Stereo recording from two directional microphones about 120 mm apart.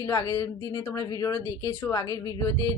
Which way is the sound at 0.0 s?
25° left (ahead or behind).